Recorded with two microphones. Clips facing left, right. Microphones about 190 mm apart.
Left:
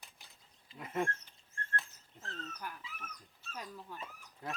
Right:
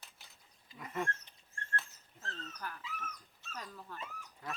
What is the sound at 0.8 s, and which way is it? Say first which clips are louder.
Speech: left 3 dB; 25° left (ahead or behind).